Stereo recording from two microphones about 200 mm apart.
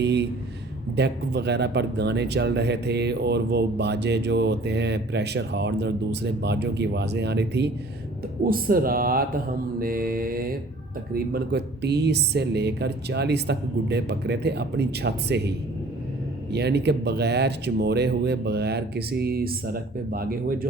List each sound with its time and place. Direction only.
0.0 s speech: 60° right (ahead or behind)
8.4 s mantra: 45° right (ahead or behind)
11.1 s speech: 50° right (ahead or behind)